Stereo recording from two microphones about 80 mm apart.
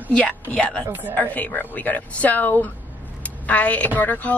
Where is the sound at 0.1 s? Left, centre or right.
Centre.